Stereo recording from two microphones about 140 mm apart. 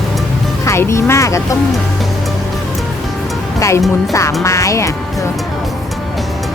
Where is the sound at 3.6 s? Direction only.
20° left (ahead or behind).